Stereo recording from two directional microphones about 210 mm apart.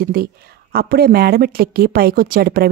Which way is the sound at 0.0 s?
45° right (ahead or behind).